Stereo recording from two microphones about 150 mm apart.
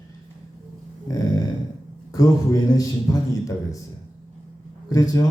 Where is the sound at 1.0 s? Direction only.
25° left (ahead or behind).